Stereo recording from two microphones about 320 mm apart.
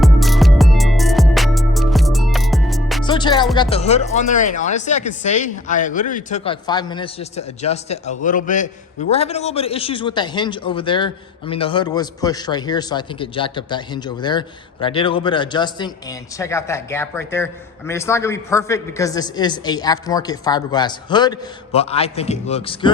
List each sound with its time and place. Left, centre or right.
0.0 s music: centre
3.0 s music: centre
3.5 s a man's voice: centre